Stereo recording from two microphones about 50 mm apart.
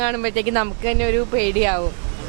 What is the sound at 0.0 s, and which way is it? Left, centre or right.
Speech, right.